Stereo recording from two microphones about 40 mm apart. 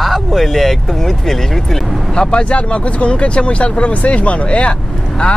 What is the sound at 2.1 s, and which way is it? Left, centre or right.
Speech, left.